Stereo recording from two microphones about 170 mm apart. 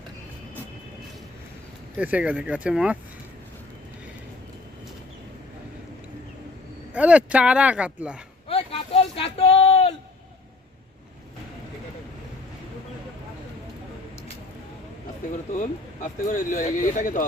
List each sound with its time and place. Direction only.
2.0 s speech: 10° right (ahead or behind)
6.9 s speech: 10° right (ahead or behind)
8.4 s a sound: 35° left (ahead or behind)
15.5 s speech: 50° left (ahead or behind)